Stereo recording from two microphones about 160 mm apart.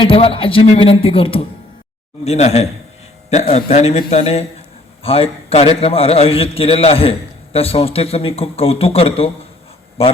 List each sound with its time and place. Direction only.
0.0 s a man's voice: 35° left (ahead or behind)